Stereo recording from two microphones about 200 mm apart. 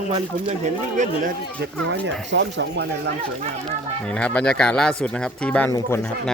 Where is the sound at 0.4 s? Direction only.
35° right (ahead or behind).